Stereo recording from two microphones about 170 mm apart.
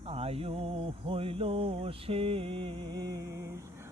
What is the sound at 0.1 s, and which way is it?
Mantra, 35° right (ahead or behind).